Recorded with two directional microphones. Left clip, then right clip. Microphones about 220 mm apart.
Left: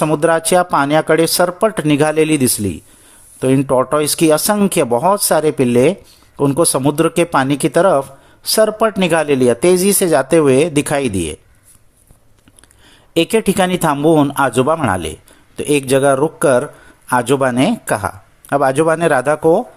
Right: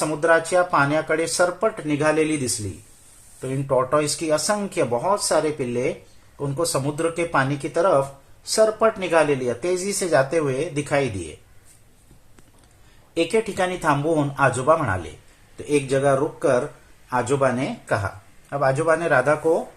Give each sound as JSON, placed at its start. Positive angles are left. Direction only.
{"t": 0.0, "sound": "speech", "side_deg": 50}
{"t": 13.1, "sound": "speech", "side_deg": 45}